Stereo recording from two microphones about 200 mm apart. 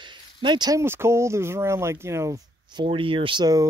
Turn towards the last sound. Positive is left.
turn(degrees=-20)  # may be behind; listen again after turning